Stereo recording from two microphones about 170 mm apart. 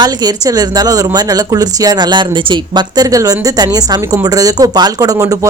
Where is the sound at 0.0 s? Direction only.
25° right (ahead or behind).